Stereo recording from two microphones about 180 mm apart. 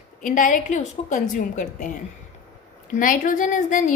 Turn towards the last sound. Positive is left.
turn(degrees=45)  # may be behind; listen again after turning